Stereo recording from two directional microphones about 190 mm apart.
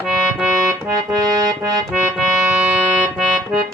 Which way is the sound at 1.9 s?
5° right (ahead or behind).